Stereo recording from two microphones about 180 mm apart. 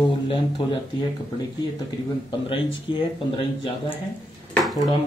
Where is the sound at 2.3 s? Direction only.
30° left (ahead or behind).